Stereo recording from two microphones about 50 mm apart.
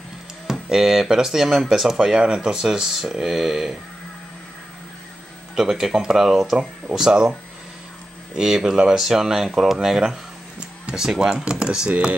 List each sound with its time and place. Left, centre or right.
0.5 s speech: centre
5.6 s speech: centre
8.4 s speech: centre
11.6 s speech: centre